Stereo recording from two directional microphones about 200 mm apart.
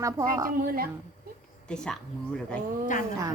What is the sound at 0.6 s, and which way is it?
Speech, 45° right (ahead or behind).